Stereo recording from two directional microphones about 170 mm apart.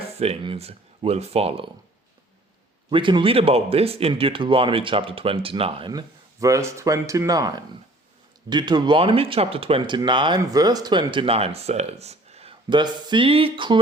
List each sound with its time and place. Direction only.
0.2 s speech: 35° right (ahead or behind)
2.9 s speech: 30° right (ahead or behind)